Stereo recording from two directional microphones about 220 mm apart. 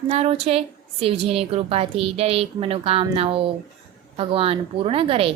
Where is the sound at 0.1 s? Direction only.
30° right (ahead or behind).